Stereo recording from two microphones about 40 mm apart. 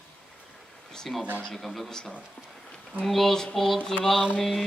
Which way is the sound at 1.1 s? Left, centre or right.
Centre.